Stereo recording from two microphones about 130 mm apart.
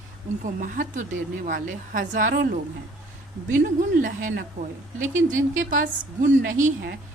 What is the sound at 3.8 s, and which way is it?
A woman's voice, 90° right.